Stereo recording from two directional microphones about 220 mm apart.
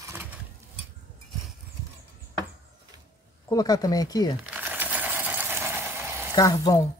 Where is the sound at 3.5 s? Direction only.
15° left (ahead or behind).